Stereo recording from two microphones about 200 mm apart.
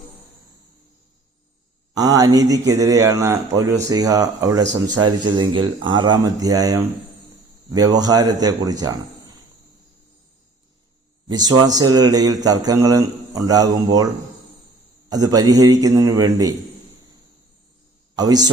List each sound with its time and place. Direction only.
2.0 s a man's voice: 20° right (ahead or behind)
11.3 s speech: 20° right (ahead or behind)
15.1 s a man's voice: 20° right (ahead or behind)
18.2 s speech: 20° right (ahead or behind)